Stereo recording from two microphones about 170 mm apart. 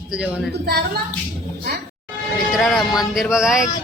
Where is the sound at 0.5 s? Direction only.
65° right (ahead or behind).